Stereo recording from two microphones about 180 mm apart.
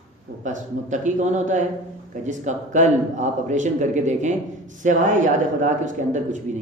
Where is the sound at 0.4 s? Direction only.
45° right (ahead or behind).